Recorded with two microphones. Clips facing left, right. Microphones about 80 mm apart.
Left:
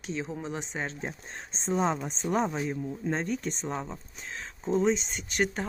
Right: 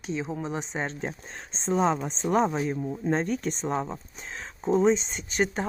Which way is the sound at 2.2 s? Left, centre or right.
Right.